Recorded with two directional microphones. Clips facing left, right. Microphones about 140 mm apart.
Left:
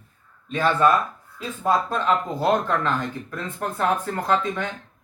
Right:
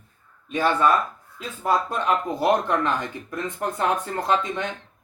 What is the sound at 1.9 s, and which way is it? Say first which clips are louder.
Speech: left 1 dB; 15° right (ahead or behind).